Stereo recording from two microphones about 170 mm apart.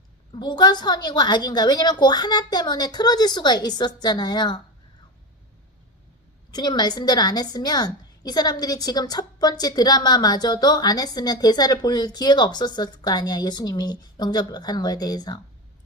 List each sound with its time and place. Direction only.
0.3 s a woman's voice: 25° left (ahead or behind)
6.5 s a woman's voice: 25° left (ahead or behind)